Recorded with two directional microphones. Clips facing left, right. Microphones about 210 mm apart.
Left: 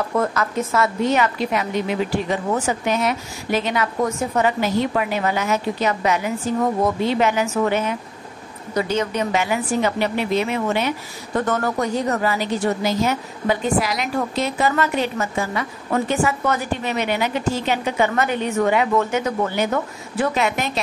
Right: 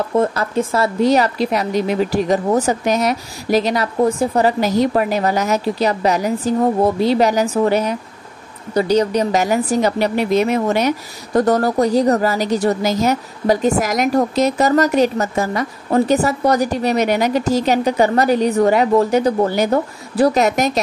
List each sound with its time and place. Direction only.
0.1 s a woman's voice: 30° right (ahead or behind)